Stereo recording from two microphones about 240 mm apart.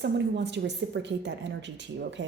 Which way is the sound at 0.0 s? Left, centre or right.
Right.